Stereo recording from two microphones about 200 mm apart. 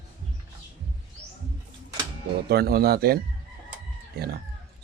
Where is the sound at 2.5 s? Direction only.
50° right (ahead or behind).